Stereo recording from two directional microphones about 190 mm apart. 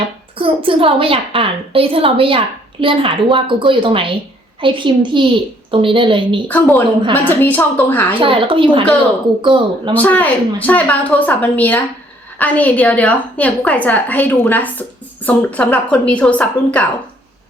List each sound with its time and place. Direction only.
0.3 s a woman's voice: 30° right (ahead or behind)
6.5 s a woman's voice: 10° left (ahead or behind)
8.2 s a woman's voice: 30° right (ahead or behind)
9.9 s a woman's voice: 10° left (ahead or behind)